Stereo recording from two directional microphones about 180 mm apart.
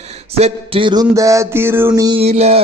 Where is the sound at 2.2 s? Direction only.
35° right (ahead or behind).